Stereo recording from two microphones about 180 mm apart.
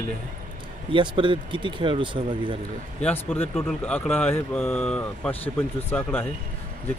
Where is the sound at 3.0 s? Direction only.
10° left (ahead or behind).